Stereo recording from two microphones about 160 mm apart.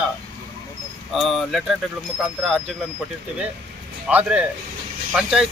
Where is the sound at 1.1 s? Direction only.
Centre (ahead or behind).